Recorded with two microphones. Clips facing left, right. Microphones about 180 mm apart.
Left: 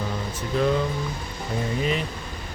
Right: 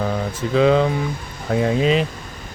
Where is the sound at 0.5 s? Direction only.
90° right.